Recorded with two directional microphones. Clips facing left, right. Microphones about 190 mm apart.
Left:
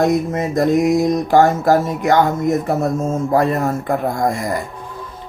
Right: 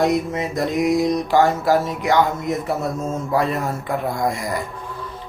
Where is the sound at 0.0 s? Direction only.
45° left (ahead or behind).